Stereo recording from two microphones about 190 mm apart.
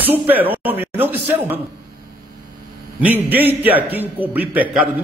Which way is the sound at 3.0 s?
10° right (ahead or behind).